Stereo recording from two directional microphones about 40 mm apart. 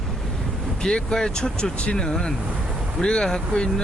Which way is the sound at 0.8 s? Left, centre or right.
Centre.